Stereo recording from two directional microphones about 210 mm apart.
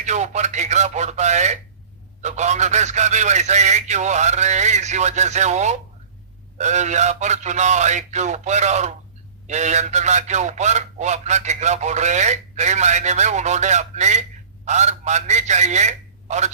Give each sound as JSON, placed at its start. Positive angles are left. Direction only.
{"t": 0.0, "sound": "a man's voice", "side_deg": -35}